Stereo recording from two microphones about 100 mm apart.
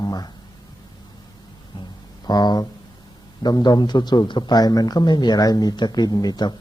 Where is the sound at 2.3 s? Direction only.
45° left (ahead or behind).